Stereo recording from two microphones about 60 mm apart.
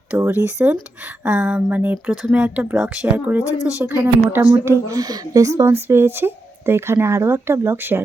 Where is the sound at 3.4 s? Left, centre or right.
Left.